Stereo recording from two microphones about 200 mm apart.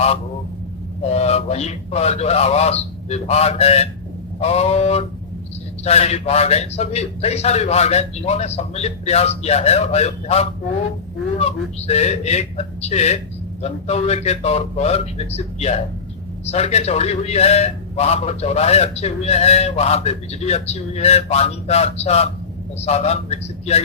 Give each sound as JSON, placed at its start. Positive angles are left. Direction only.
{"t": 1.0, "sound": "a man's voice", "side_deg": 30}